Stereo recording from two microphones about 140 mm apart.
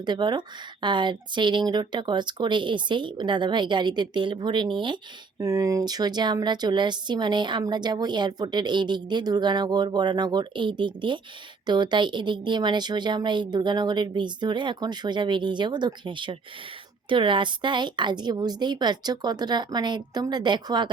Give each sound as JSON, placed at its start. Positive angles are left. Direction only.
{"t": 0.0, "sound": "speech", "side_deg": -30}
{"t": 5.4, "sound": "speech", "side_deg": -25}